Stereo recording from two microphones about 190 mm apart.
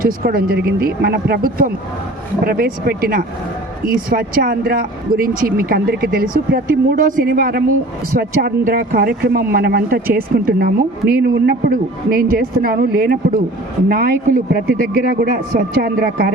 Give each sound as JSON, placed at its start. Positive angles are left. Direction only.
{"t": 0.0, "sound": "speech", "side_deg": -50}